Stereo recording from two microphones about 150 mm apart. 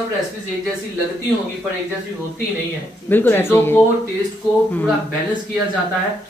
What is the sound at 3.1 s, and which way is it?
Speech, 15° left (ahead or behind).